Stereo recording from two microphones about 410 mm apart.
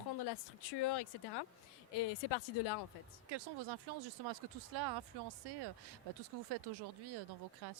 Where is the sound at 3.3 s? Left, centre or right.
Right.